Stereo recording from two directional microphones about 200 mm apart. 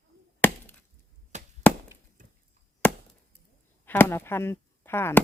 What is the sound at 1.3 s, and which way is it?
Chop, 35° right (ahead or behind).